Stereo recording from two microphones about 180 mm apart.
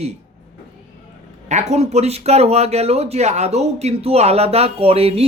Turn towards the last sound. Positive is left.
turn(degrees=-35)  # may be behind; listen again after turning